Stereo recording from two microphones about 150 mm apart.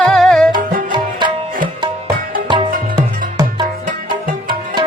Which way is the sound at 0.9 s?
30° right (ahead or behind).